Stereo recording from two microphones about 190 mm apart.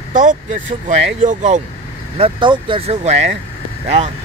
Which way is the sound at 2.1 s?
25° right (ahead or behind).